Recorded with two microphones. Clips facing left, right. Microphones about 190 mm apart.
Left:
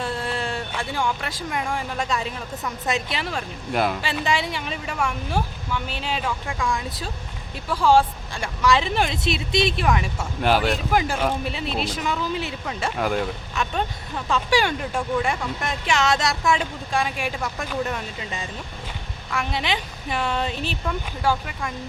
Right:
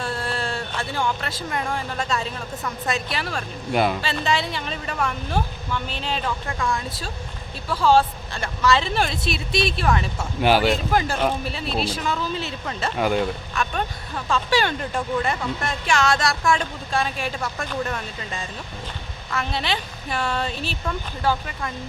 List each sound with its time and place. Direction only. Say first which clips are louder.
0.0 s speech: even; 20° left (ahead or behind)
3.7 s speech: right 2 dB; centre (ahead or behind)
4.0 s speech: even; 15° left (ahead or behind)
10.4 s speech: right 2 dB; centre (ahead or behind)
10.9 s speech: even; 15° left (ahead or behind)
13.0 s speech: right 3 dB; centre (ahead or behind)
13.5 s speech: left 1 dB; 20° left (ahead or behind)